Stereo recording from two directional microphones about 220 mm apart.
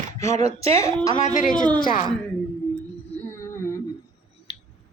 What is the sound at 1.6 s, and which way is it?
Speech, 20° right (ahead or behind).